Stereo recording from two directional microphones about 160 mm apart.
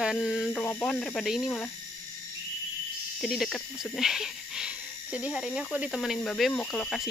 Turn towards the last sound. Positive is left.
turn(degrees=5)  # may be behind; listen again after turning